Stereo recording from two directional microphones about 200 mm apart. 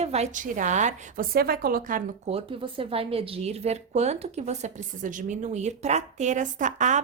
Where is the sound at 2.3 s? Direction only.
25° right (ahead or behind).